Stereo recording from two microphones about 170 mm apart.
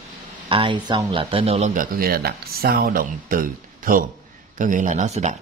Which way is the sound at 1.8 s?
60° right (ahead or behind).